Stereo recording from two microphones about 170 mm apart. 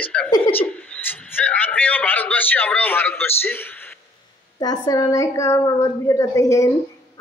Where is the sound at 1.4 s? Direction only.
10° left (ahead or behind).